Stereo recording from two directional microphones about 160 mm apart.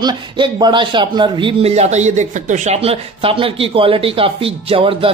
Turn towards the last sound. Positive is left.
turn(degrees=-35)  # may be behind; listen again after turning